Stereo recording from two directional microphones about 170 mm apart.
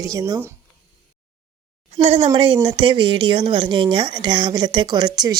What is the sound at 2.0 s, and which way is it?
A woman's voice, 35° right (ahead or behind).